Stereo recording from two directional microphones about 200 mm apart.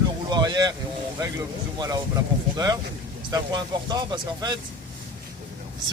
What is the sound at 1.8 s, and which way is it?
Speech, 20° right (ahead or behind).